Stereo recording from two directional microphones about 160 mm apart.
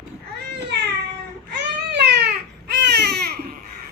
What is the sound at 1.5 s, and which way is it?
Baby cry, 90° right.